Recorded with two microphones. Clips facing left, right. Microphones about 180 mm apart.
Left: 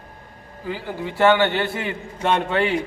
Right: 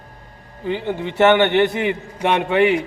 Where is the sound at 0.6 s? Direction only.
20° right (ahead or behind).